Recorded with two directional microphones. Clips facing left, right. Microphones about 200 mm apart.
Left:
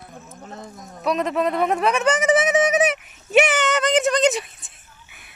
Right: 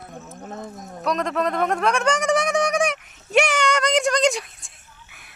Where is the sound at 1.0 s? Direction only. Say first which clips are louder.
Left 2 dB; 5° left (ahead or behind).